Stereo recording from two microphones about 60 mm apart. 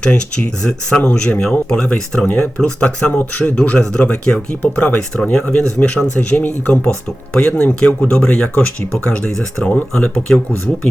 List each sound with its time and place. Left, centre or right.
0.0 s speech: centre